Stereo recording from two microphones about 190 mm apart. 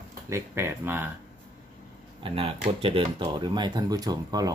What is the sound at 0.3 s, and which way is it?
Speech, 15° right (ahead or behind).